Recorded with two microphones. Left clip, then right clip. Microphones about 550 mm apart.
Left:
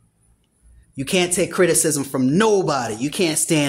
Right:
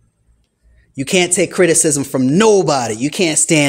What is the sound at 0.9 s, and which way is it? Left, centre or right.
Speech, left.